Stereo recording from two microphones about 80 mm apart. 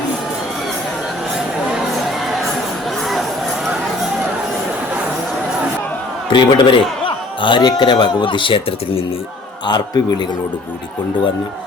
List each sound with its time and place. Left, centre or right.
6.3 s speech: left
9.6 s a man's voice: left